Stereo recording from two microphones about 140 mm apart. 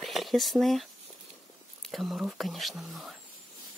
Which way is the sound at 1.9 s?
Centre (ahead or behind).